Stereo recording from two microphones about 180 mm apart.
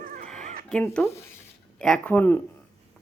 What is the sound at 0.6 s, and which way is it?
Speech, 5° left (ahead or behind).